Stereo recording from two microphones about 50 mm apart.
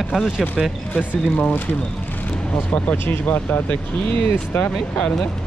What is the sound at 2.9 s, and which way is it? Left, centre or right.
Speech, left.